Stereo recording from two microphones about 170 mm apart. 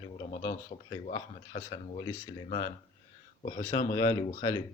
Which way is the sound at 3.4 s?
45° left (ahead or behind).